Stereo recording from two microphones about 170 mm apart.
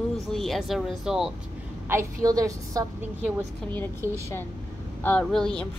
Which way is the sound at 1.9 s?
20° right (ahead or behind).